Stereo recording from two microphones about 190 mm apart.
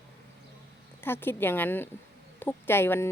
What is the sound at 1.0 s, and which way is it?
Speech, 10° left (ahead or behind).